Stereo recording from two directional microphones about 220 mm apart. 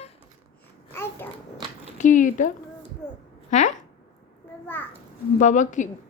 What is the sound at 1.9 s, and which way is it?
Speech, 35° left (ahead or behind).